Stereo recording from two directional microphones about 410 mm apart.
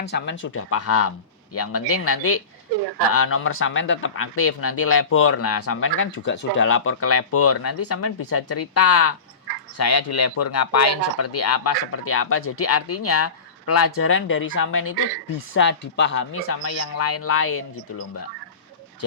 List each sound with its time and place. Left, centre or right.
0.0 s speech: left